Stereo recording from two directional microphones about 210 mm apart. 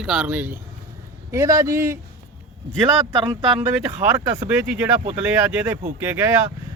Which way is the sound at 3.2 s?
20° right (ahead or behind).